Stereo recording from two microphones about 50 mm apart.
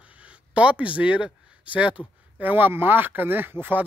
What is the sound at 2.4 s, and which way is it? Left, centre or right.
Speech, right.